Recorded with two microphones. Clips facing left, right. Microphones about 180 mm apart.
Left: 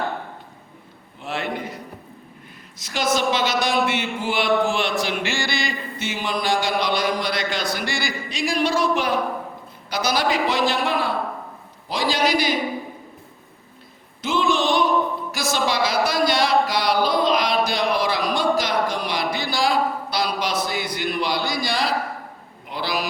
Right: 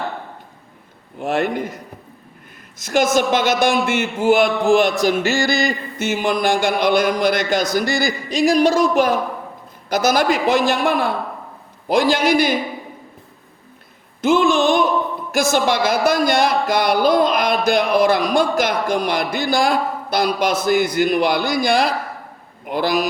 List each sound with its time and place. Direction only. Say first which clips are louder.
1.2 s speech: right 7 dB; 45° right (ahead or behind)
2.8 s speech: right 5 dB; 50° right (ahead or behind)
14.2 s a man's voice: right 6 dB; 50° right (ahead or behind)